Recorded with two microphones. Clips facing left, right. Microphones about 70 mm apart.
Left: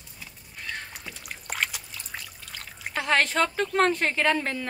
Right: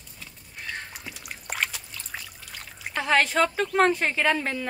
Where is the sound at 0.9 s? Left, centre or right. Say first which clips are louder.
Even; centre.